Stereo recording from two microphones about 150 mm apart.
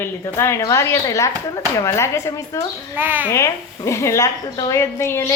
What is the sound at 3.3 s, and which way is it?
A woman's voice, 20° left (ahead or behind).